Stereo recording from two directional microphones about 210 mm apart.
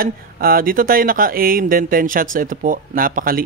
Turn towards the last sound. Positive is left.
turn(degrees=-45)  # may be behind; listen again after turning